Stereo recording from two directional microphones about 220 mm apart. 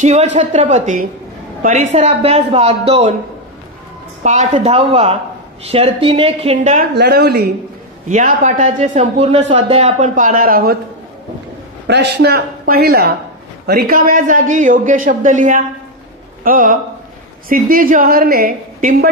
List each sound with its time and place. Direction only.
0.0 s a man's voice: 30° right (ahead or behind)
4.2 s a man's voice: 35° right (ahead or behind)
6.9 s speech: 45° right (ahead or behind)
8.1 s a man's voice: 35° right (ahead or behind)
11.9 s a man's voice: 50° right (ahead or behind)